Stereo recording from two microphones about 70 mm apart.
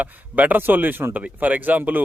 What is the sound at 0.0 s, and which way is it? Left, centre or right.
Speech, right.